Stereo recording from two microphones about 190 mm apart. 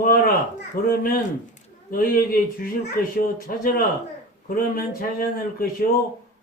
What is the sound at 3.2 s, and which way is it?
Mantra, 45° left (ahead or behind).